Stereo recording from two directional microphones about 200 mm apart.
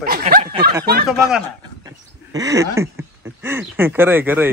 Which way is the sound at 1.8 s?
15° right (ahead or behind).